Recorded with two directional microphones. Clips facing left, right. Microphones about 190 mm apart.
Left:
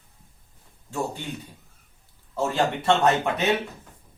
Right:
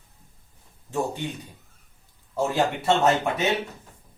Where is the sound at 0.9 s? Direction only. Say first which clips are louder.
Right 2 dB; 20° right (ahead or behind).